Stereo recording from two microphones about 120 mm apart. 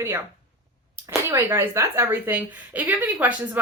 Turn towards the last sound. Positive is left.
turn(degrees=-15)  # may be behind; listen again after turning